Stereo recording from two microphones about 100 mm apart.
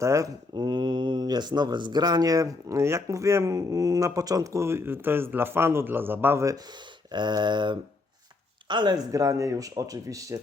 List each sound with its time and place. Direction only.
0.0 s speech: 30° right (ahead or behind)
7.1 s a sound: 45° right (ahead or behind)
8.6 s speech: 50° right (ahead or behind)
9.1 s speech: 35° right (ahead or behind)